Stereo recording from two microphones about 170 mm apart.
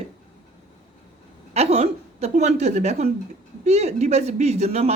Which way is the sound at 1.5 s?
40° right (ahead or behind).